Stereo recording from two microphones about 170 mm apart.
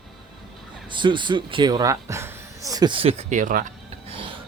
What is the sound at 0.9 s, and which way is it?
Speech, 30° right (ahead or behind).